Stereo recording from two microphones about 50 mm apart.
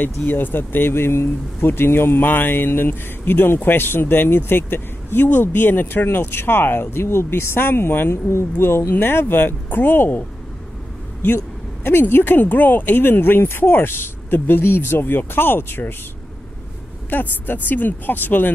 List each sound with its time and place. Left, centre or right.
0.3 s speech: left
8.1 s speech: left
11.2 s speech: left
17.1 s speech: left